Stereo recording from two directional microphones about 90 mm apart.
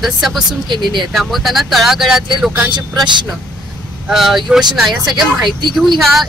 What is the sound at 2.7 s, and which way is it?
Speech, 60° right (ahead or behind).